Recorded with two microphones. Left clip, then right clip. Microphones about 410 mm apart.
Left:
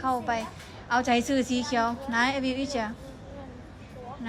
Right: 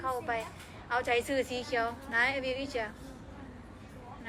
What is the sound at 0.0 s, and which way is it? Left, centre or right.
A woman's voice, centre.